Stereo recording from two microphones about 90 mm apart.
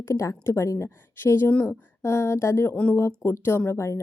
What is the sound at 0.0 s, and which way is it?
A woman's voice, 35° left (ahead or behind).